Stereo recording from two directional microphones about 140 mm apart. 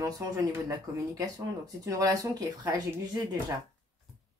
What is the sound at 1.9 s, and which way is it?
Speech, 25° right (ahead or behind).